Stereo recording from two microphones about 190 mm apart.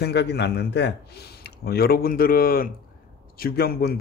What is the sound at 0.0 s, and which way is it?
A man's voice, 60° left (ahead or behind).